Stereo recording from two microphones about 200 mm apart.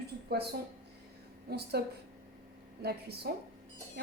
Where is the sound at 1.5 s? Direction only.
55° right (ahead or behind).